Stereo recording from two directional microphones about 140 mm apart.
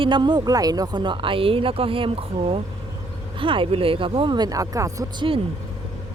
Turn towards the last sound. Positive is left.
turn(degrees=-25)  # may be behind; listen again after turning